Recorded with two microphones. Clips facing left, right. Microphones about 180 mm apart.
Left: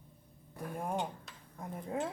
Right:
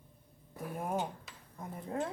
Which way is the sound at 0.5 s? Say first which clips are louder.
Right 1 dB; 5° right (ahead or behind).